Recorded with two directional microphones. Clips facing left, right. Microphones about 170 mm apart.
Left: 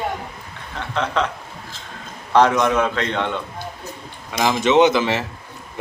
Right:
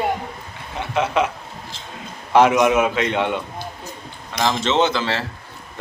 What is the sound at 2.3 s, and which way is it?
A man's voice, 10° right (ahead or behind).